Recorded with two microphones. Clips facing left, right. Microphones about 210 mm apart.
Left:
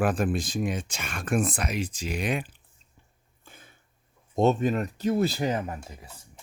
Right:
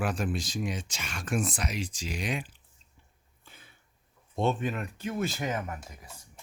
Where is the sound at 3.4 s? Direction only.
50° left (ahead or behind).